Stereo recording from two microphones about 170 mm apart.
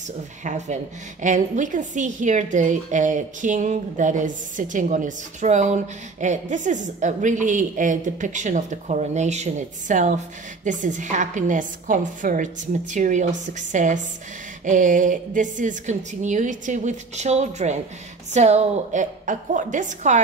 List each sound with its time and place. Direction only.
0.4 s a woman's voice: 45° right (ahead or behind)